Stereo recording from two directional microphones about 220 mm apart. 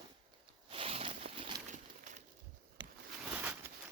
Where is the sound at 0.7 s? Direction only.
25° right (ahead or behind).